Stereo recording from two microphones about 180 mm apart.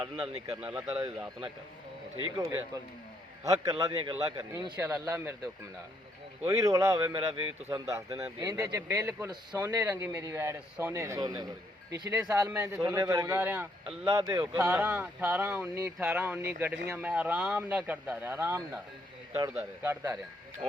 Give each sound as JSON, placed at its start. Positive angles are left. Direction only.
{"t": 0.2, "sound": "a man's voice", "side_deg": -10}
{"t": 2.1, "sound": "a man's voice", "side_deg": -25}
{"t": 6.5, "sound": "a man's voice", "side_deg": -15}
{"t": 7.0, "sound": "a man's voice", "side_deg": -30}
{"t": 7.7, "sound": "a man's voice", "side_deg": -15}
{"t": 14.1, "sound": "a man's voice", "side_deg": -15}